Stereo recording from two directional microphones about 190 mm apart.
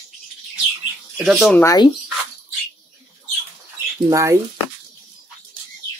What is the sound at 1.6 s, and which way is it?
Speech, 15° left (ahead or behind).